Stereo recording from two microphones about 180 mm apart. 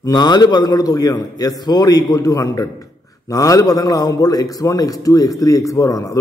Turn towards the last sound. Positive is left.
turn(degrees=15)  # may be behind; listen again after turning